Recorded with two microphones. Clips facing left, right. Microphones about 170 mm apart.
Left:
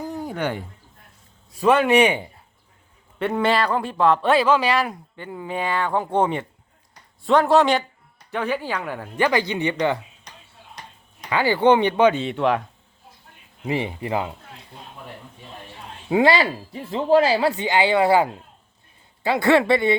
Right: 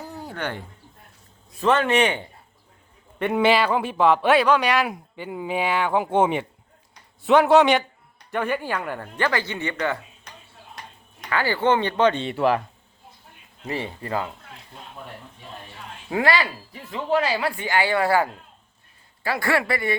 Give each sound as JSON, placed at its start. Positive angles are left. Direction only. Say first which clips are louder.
{"t": 0.0, "sound": "a sound", "louder": "left 5 dB", "side_deg": 15}
{"t": 1.5, "sound": "speech", "louder": "left 3 dB", "side_deg": 10}
{"t": 3.2, "sound": "speech", "louder": "right 1 dB", "side_deg": -5}
{"t": 4.9, "sound": "speech", "louder": "right 2 dB", "side_deg": -10}
{"t": 11.3, "sound": "speech", "louder": "left 4 dB", "side_deg": 15}
{"t": 13.6, "sound": "speech", "louder": "left 5 dB", "side_deg": 15}
{"t": 16.0, "sound": "speech", "louder": "left 5 dB", "side_deg": 20}